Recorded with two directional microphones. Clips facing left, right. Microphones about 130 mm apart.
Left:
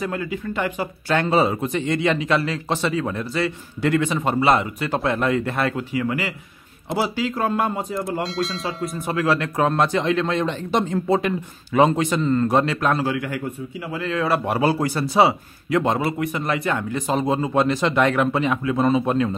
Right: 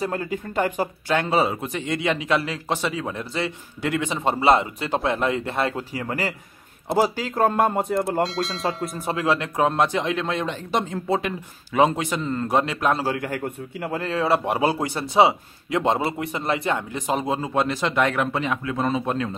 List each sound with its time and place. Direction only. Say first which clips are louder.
0.0 s speech: even; 40° right (ahead or behind)
1.0 s a man's voice: left 3 dB; 10° right (ahead or behind); by 5.9 s 25° right (ahead or behind)
5.9 s a man's voice: left 3 dB; 40° right (ahead or behind)
8.2 s a man's voice: right 1 dB; centre (ahead or behind)
8.9 s speech: left 2 dB; 30° right (ahead or behind)
9.2 s a man's voice: left 1 dB; 20° right (ahead or behind)
12.9 s a man's voice: left 2 dB; 40° right (ahead or behind)
14.2 s speech: left 1 dB; 25° right (ahead or behind)
17.3 s a man's voice: left 6 dB; 5° right (ahead or behind)